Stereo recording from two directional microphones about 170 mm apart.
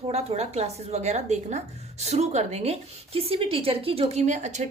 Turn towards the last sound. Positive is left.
turn(degrees=-45)  # may be behind; listen again after turning